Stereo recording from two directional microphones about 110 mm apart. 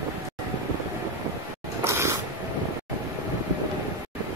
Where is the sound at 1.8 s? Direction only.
25° right (ahead or behind).